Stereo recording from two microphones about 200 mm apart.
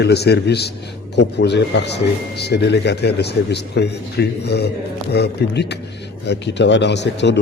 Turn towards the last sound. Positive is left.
turn(degrees=60)  # may be behind; listen again after turning